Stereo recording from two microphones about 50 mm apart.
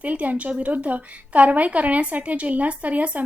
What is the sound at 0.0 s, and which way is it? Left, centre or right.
A woman's voice, right.